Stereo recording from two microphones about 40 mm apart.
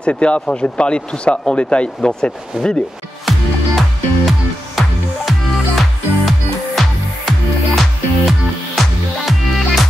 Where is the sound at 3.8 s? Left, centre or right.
Centre.